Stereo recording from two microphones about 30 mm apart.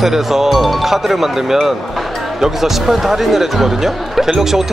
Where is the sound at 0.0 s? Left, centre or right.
Centre.